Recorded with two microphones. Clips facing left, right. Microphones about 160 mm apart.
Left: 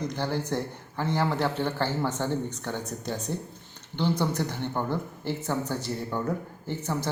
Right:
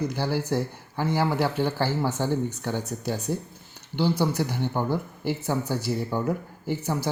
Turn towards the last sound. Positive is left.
turn(degrees=-10)  # may be behind; listen again after turning